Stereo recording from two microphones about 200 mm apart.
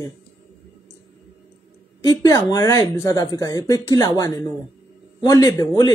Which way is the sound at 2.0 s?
15° left (ahead or behind).